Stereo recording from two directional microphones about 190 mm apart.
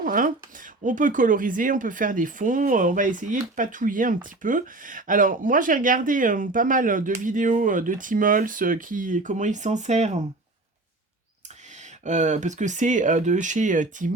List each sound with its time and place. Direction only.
0.0 s speech: 45° right (ahead or behind)
12.0 s speech: 40° right (ahead or behind)